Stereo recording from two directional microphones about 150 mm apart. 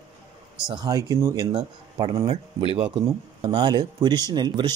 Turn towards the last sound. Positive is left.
turn(degrees=-30)  # may be behind; listen again after turning